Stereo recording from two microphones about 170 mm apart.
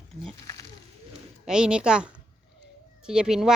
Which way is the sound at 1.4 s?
5° right (ahead or behind).